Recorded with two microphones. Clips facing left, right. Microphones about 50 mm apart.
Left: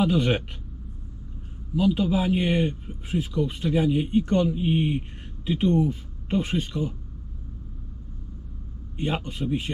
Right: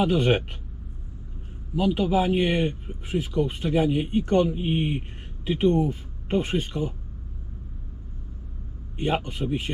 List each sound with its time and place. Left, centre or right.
0.0 s a man's voice: right
1.7 s a man's voice: right
9.0 s a man's voice: right